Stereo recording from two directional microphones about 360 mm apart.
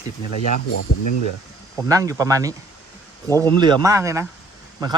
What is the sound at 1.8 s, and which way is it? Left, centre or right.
Speech, centre.